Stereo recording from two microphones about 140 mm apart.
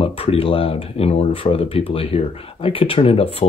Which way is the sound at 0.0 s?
45° left (ahead or behind).